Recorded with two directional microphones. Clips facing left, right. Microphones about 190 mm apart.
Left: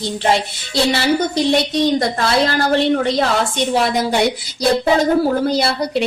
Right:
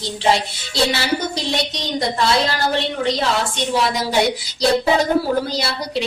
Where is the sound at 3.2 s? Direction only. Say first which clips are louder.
Left 3 dB; 55° left (ahead or behind).